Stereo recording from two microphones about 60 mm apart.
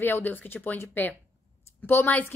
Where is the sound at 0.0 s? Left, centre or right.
Left.